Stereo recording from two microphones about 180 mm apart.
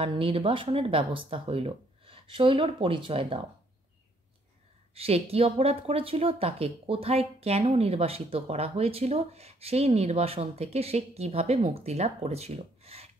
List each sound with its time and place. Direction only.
0.0 s speech: 30° right (ahead or behind)
4.9 s speech: 35° right (ahead or behind)